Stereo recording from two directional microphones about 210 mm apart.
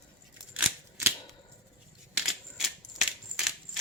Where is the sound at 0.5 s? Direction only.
10° right (ahead or behind).